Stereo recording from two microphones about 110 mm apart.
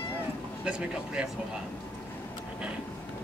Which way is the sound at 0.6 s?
10° right (ahead or behind).